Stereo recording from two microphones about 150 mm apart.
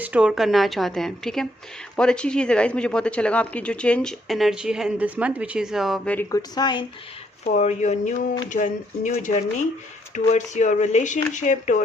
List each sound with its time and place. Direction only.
0.0 s speech: 10° right (ahead or behind)
6.1 s a woman's voice: 25° left (ahead or behind)
7.5 s speech: 50° left (ahead or behind)